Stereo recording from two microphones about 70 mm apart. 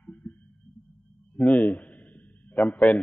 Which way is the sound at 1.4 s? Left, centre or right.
Left.